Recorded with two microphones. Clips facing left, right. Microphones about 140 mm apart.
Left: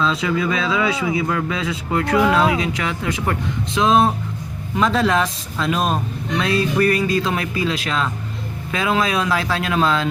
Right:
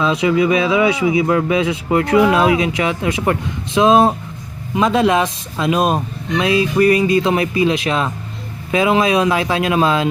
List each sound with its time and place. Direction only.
0.0 s a man's voice: 15° right (ahead or behind)